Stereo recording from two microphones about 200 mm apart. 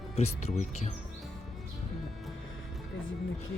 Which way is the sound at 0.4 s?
35° left (ahead or behind).